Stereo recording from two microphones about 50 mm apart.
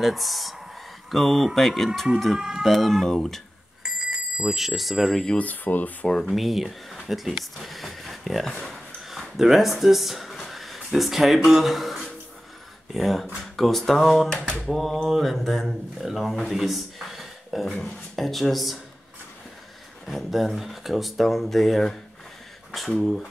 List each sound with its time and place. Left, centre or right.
0.0 s speech: centre
2.3 s speech: centre
2.6 s speech: centre
3.8 s alarm: centre
5.4 s speech: left
6.0 s speech: centre
6.3 s speech: centre
9.1 s speech: centre
20.1 s speech: centre